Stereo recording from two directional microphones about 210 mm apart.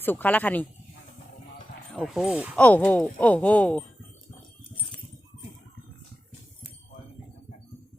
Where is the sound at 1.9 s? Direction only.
Centre (ahead or behind).